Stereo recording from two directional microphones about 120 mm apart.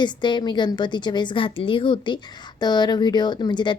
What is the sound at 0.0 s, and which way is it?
A woman's voice, 40° left (ahead or behind).